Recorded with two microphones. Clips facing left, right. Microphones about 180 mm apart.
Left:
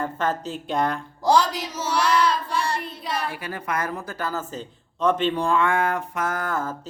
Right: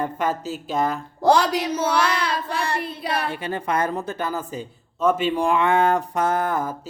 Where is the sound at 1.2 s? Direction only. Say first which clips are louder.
Right 2 dB; 60° right (ahead or behind).